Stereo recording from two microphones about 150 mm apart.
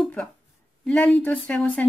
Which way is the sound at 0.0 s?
5° left (ahead or behind).